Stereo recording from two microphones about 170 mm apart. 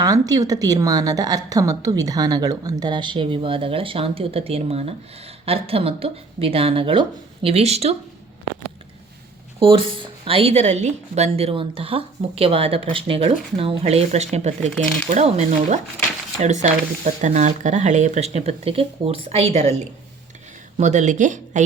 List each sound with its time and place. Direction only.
0.0 s a woman's voice: 20° right (ahead or behind); by 7.9 s 40° right (ahead or behind)
9.6 s speech: 30° right (ahead or behind); by 21.6 s 45° right (ahead or behind)